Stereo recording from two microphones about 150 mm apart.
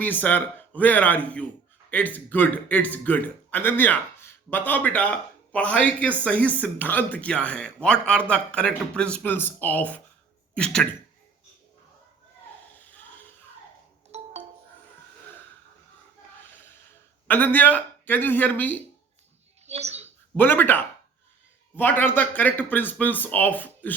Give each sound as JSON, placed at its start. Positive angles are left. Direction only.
{"t": 0.0, "sound": "a man's voice", "side_deg": 10}
{"t": 14.1, "sound": "music", "side_deg": -45}
{"t": 17.2, "sound": "a man's voice", "side_deg": 10}
{"t": 19.6, "sound": "mouse", "side_deg": -45}
{"t": 20.3, "sound": "a man's voice", "side_deg": 15}